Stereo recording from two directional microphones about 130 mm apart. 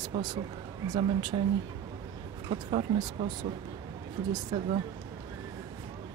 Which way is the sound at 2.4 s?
45° right (ahead or behind).